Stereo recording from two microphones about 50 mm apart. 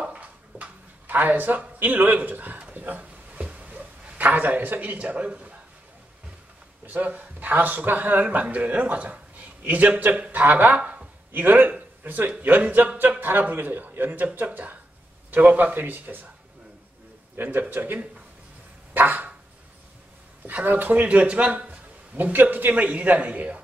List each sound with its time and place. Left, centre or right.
0.0 s a sound: right
6.9 s a man's voice: right
17.4 s a man's voice: right
18.9 s a man's voice: right
20.4 s speech: right
21.6 s a man's voice: right